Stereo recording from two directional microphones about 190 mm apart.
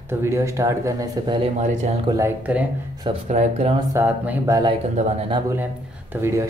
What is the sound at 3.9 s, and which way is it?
Speech, 15° right (ahead or behind).